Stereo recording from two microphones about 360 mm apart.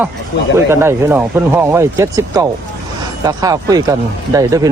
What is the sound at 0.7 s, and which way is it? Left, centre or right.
Speech, centre.